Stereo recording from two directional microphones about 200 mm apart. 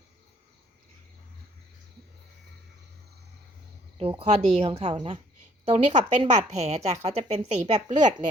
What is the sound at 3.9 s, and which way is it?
Speech, 25° right (ahead or behind).